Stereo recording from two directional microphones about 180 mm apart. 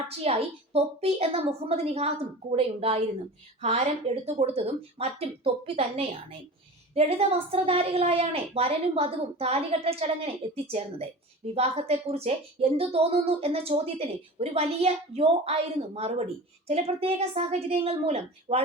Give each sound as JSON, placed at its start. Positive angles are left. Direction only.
{"t": 0.2, "sound": "a woman's voice", "side_deg": -35}